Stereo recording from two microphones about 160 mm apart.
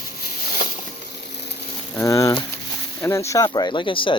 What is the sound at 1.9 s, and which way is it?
Speech, 20° left (ahead or behind).